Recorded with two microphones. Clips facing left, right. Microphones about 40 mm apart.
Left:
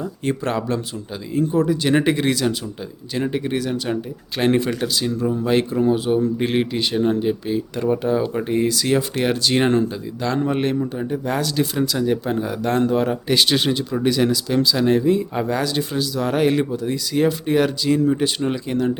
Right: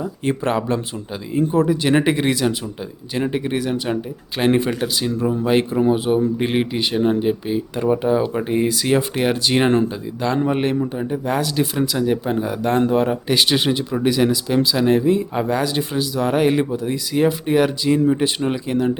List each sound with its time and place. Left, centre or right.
0.0 s speech: centre